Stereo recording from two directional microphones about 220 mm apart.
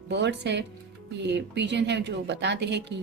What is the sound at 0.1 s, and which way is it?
A woman's voice, 50° right (ahead or behind).